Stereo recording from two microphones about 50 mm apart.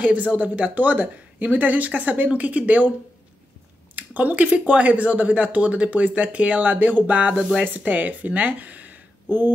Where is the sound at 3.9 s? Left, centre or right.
Right.